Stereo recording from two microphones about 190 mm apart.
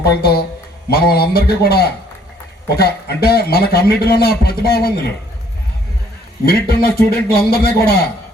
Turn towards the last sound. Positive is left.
turn(degrees=55)  # may be behind; listen again after turning